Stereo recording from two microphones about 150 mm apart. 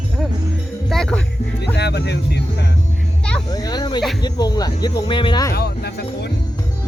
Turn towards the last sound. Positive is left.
turn(degrees=90)